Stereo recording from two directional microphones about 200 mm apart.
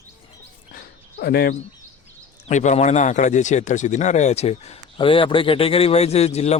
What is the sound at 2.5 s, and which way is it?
A man's voice, 35° left (ahead or behind).